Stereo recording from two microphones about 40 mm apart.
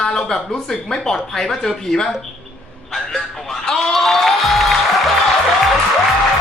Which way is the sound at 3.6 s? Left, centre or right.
Centre.